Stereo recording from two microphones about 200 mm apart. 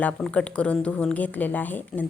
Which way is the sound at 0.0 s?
5° left (ahead or behind).